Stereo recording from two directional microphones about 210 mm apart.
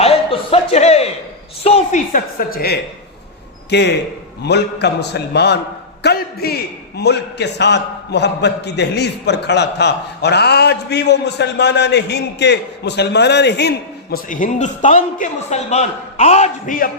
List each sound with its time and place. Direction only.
0.0 s a sound: 25° left (ahead or behind)
1.6 s a woman's voice: 30° left (ahead or behind)
3.7 s a man's voice: 55° left (ahead or behind)